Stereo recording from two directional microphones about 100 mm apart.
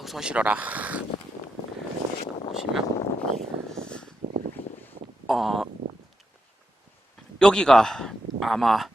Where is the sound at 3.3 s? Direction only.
5° left (ahead or behind).